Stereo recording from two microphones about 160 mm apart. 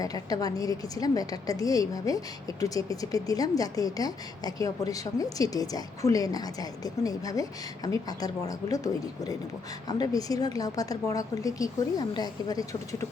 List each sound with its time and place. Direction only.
0.0 s a woman's voice: 20° left (ahead or behind)